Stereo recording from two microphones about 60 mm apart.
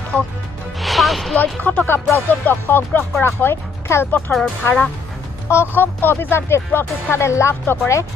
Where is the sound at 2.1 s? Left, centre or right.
Left.